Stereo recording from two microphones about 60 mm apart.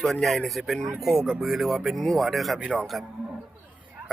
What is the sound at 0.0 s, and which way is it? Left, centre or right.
Speech, centre.